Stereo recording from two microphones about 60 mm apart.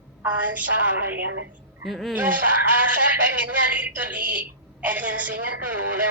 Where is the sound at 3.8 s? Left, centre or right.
Right.